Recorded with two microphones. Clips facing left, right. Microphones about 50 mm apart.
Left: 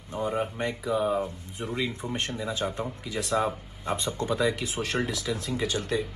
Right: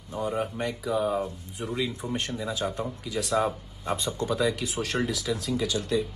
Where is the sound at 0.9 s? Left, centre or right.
Centre.